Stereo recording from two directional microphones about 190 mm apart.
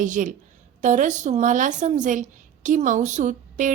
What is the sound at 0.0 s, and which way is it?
A woman's voice, 40° right (ahead or behind).